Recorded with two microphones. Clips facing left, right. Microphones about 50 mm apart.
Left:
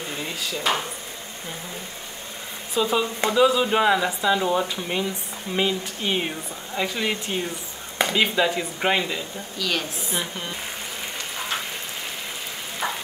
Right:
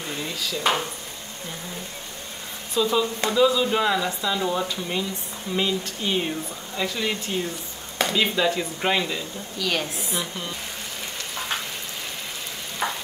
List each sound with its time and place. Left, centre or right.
0.2 s dishes: centre
2.7 s speech: left
9.6 s a woman's voice: centre
12.8 s sizzle: centre